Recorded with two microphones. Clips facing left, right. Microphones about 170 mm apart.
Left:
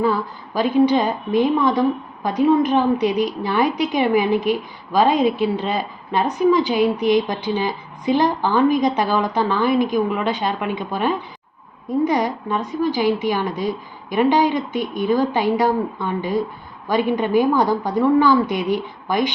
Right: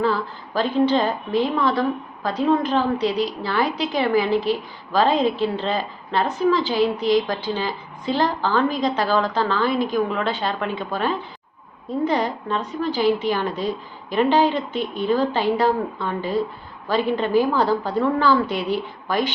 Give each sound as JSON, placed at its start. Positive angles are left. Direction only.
{"t": 0.0, "sound": "a woman's voice", "side_deg": 15}